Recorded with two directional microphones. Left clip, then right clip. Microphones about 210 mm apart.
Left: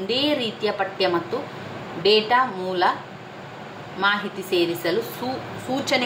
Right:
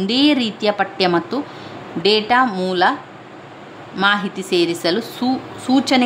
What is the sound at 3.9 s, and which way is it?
A woman's voice, 45° right (ahead or behind).